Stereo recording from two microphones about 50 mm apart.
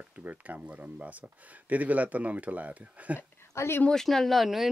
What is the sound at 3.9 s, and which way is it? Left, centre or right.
Speech, centre.